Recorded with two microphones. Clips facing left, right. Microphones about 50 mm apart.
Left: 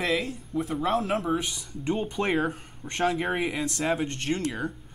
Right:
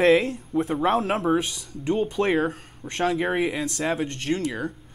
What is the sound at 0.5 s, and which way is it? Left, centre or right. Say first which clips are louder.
Speech: right 5 dB; right.